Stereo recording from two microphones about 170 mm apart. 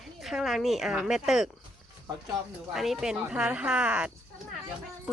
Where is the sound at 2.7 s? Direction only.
Centre (ahead or behind).